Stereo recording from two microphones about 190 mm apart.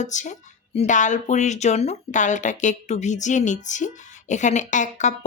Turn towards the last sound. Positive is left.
turn(degrees=40)  # may be behind; listen again after turning